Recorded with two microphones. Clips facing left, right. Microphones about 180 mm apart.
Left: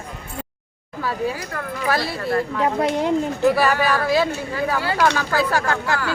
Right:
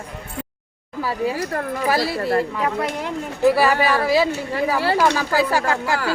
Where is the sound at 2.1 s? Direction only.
35° right (ahead or behind).